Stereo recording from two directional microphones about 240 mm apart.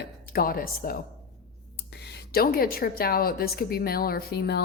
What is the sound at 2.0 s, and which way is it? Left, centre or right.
A woman's voice, left.